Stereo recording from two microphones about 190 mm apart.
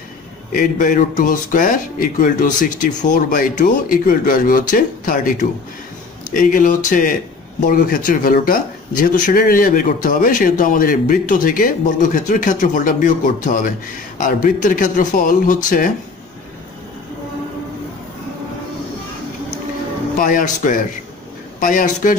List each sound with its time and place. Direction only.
0.5 s speech: 45° left (ahead or behind)
20.2 s speech: 45° left (ahead or behind)